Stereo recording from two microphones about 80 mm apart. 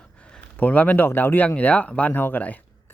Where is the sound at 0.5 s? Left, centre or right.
Left.